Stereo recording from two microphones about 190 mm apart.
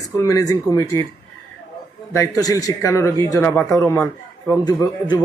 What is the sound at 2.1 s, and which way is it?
A man's voice, 15° left (ahead or behind).